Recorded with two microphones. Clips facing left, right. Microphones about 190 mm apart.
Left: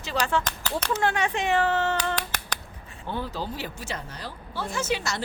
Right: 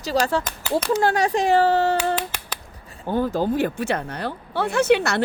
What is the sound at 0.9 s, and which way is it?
Speech, 35° right (ahead or behind).